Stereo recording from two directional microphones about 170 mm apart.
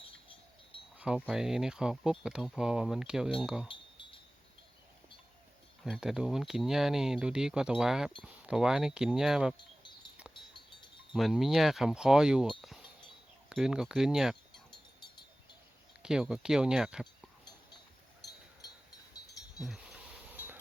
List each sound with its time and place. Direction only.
0.9 s a sound: 5° right (ahead or behind)
1.3 s speech: 5° right (ahead or behind)
5.8 s speech: centre (ahead or behind)
11.1 s speech: centre (ahead or behind)
13.5 s speech: 5° right (ahead or behind)
14.5 s wind chime: 25° left (ahead or behind)
16.0 s speech: 5° right (ahead or behind)